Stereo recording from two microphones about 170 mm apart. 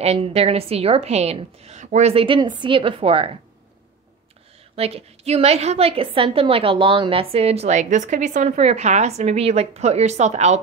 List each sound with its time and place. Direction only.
0.0 s a woman's voice: 40° right (ahead or behind)
4.7 s a woman's voice: 35° right (ahead or behind)